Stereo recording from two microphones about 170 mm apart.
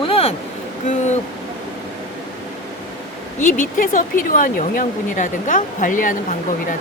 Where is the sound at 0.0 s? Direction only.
35° left (ahead or behind).